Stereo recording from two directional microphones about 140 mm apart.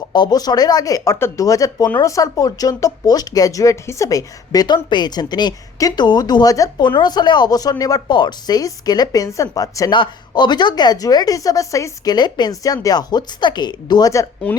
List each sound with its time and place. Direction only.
0.1 s speech: 30° left (ahead or behind)
14.5 s speech: 10° left (ahead or behind)